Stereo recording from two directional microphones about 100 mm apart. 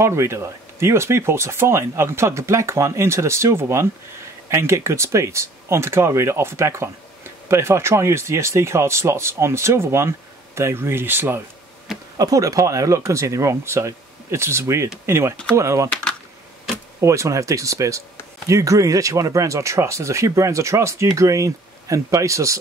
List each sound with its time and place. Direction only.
0.0 s speech: 25° right (ahead or behind)
12.2 s speech: 35° right (ahead or behind)
15.9 s speech: 10° left (ahead or behind)
17.0 s speech: 30° right (ahead or behind)